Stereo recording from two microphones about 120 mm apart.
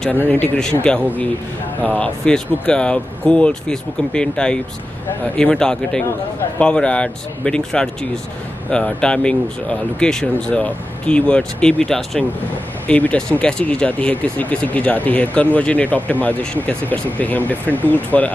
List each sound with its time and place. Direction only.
0.1 s speech: 15° left (ahead or behind)